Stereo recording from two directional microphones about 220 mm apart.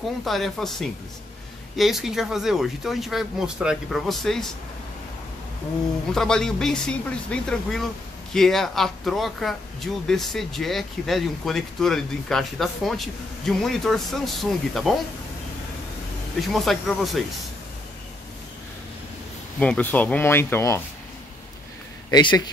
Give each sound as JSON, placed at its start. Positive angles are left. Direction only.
{"t": 0.2, "sound": "speech", "side_deg": 0}
{"t": 6.1, "sound": "speech", "side_deg": 5}
{"t": 16.3, "sound": "speech", "side_deg": 0}
{"t": 19.6, "sound": "speech", "side_deg": 5}
{"t": 22.1, "sound": "speech", "side_deg": 20}